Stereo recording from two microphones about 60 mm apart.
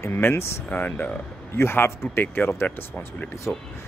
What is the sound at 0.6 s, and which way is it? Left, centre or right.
Speech, left.